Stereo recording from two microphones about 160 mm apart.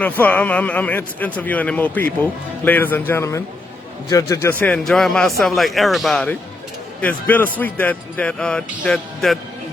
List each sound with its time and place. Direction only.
0.0 s a man's voice: 10° left (ahead or behind)